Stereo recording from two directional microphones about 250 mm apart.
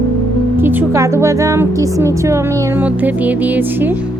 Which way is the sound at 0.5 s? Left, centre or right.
Centre.